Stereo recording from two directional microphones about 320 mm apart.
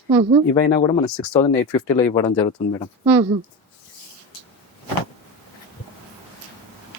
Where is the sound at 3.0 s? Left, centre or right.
Centre.